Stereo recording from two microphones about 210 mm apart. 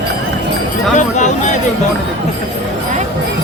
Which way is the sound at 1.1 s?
35° left (ahead or behind).